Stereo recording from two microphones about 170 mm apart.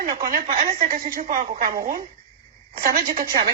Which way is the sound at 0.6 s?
50° right (ahead or behind).